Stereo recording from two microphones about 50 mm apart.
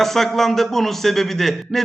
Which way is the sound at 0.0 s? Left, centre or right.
Centre.